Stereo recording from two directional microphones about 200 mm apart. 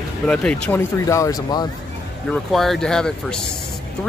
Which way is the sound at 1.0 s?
15° left (ahead or behind).